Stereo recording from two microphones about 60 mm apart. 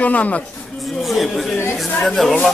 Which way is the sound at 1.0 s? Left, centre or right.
Centre.